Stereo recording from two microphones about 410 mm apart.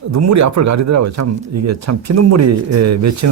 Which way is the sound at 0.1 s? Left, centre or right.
Right.